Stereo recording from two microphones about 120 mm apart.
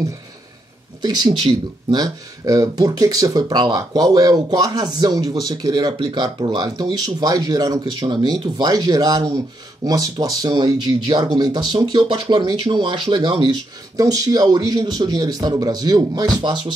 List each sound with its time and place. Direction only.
1.0 s speech: 35° right (ahead or behind)